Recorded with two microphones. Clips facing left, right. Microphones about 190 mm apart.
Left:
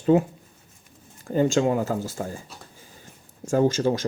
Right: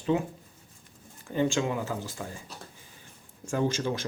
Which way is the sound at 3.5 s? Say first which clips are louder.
Left 7 dB; 40° left (ahead or behind).